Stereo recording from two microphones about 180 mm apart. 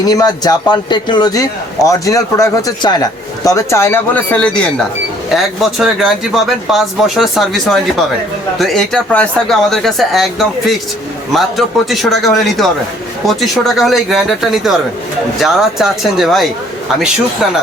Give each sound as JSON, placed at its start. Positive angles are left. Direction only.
{"t": 0.0, "sound": "a man's voice", "side_deg": 20}